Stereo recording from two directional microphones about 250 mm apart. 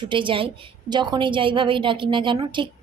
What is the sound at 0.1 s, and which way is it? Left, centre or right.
A woman's voice, centre.